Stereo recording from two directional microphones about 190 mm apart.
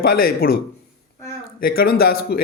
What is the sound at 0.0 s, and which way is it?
Speech, 50° left (ahead or behind).